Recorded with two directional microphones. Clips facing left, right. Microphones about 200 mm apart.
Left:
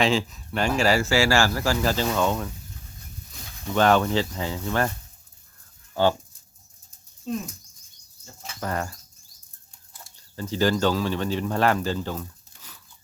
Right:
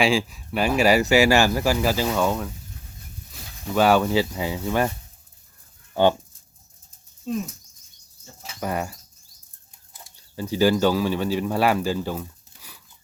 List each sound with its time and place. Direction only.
0.0 s speech: 10° right (ahead or behind)
5.9 s speech: 20° right (ahead or behind)
7.3 s speech: centre (ahead or behind)
8.4 s bird: 10° right (ahead or behind)
10.0 s speech: 10° right (ahead or behind)